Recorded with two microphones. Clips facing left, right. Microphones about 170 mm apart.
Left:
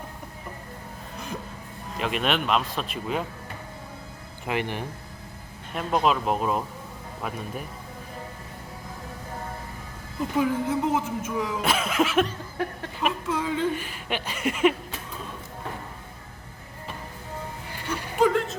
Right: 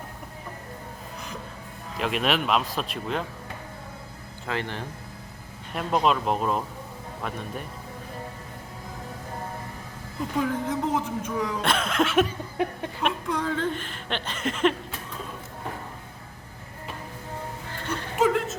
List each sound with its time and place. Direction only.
2.0 s speech: centre (ahead or behind)
4.4 s speech: 15° left (ahead or behind)
5.7 s speech: centre (ahead or behind)
10.3 s speech: 5° left (ahead or behind)
17.7 s music: 10° left (ahead or behind)
18.2 s a sound: centre (ahead or behind)